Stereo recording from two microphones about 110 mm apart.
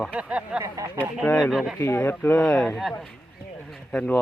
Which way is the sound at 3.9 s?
15° left (ahead or behind).